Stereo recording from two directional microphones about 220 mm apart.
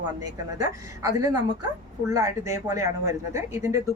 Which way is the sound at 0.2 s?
15° right (ahead or behind).